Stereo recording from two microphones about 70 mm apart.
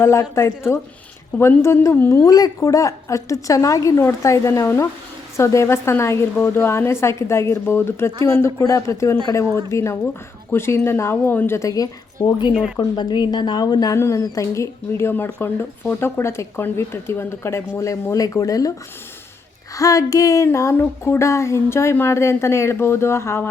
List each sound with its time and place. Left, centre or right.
0.0 s a sound: left
1.4 s a woman's voice: left
2.0 s a sound: left
5.4 s a woman's voice: left
9.7 s a sound: left
10.5 s a woman's voice: left
11.6 s speech: left
13.0 s a woman's voice: left
13.9 s a woman's voice: left
17.7 s speech: left
19.7 s a sound: left
22.1 s a woman's voice: left